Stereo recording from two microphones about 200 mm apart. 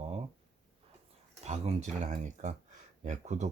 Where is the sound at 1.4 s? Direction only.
30° right (ahead or behind).